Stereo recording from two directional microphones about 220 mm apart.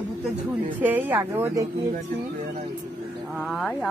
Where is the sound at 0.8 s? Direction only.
10° right (ahead or behind).